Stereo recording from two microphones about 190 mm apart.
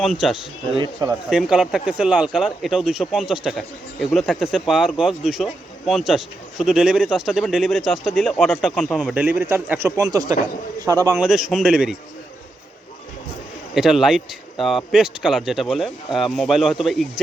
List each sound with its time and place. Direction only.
0.0 s a man's voice: centre (ahead or behind); by 11.2 s 20° right (ahead or behind)
11.2 s speech: 5° right (ahead or behind)
13.7 s speech: centre (ahead or behind)